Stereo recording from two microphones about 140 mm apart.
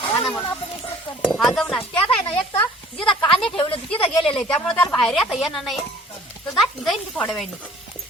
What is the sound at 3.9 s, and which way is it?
Speech, 40° left (ahead or behind).